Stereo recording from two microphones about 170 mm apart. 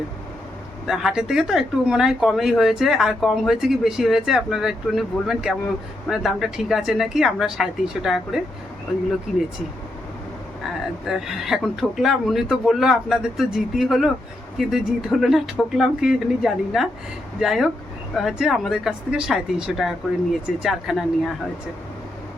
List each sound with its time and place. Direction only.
0.9 s speech: centre (ahead or behind)
11.0 s speech: centre (ahead or behind)